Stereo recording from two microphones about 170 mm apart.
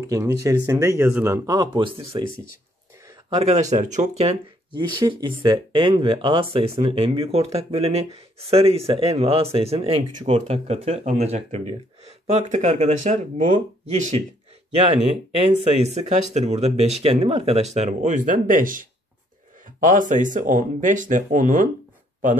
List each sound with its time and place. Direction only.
0.0 s speech: 20° right (ahead or behind)
3.3 s speech: 40° right (ahead or behind)
4.7 s speech: 25° right (ahead or behind); by 14.2 s 45° right (ahead or behind)
15.3 s speech: 35° right (ahead or behind); by 21.6 s 50° right (ahead or behind)